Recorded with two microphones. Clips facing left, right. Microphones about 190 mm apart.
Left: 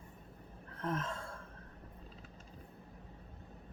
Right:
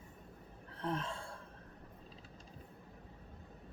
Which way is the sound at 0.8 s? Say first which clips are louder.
Left 1 dB; 30° right (ahead or behind).